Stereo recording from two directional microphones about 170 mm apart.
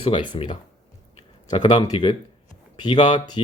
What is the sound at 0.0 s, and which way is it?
Speech, 30° left (ahead or behind).